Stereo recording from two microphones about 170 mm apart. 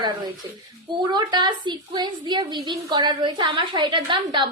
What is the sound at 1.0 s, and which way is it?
A woman's voice, 25° right (ahead or behind).